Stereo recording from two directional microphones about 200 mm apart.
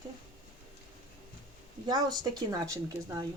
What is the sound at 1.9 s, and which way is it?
A woman's voice, 20° right (ahead or behind).